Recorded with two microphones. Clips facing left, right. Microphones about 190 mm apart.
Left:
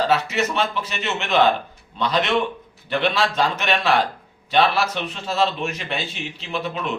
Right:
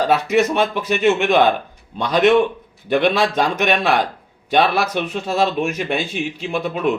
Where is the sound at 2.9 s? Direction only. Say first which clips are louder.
Right 5 dB; 50° right (ahead or behind).